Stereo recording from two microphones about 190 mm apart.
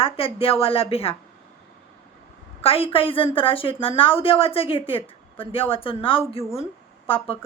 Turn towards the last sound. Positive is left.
turn(degrees=30)  # may be behind; listen again after turning